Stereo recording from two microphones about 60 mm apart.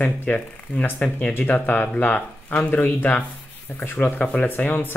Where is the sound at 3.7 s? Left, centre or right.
Left.